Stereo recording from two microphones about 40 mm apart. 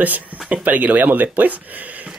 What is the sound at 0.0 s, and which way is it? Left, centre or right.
Speech, right.